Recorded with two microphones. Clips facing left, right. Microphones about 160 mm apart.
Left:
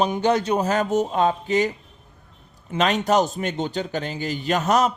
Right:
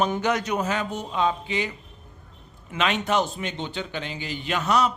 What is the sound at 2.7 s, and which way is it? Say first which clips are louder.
Speech: left 4 dB; 40° left (ahead or behind).